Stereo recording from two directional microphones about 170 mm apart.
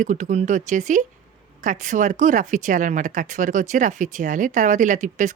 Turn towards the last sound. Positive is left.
turn(degrees=-45)  # may be behind; listen again after turning